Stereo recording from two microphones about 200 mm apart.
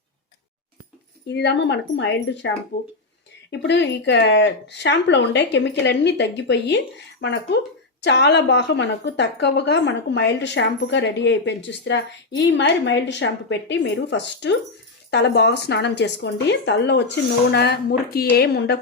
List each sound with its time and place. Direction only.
1.3 s a woman's voice: 60° left (ahead or behind)